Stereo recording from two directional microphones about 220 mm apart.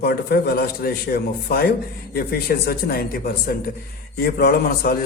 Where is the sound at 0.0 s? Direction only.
45° left (ahead or behind).